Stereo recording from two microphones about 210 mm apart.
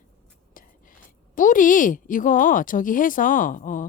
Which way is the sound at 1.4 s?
40° left (ahead or behind).